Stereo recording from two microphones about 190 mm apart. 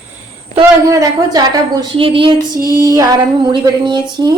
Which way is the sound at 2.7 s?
15° right (ahead or behind).